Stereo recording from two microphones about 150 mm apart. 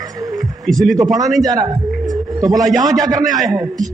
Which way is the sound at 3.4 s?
Centre (ahead or behind).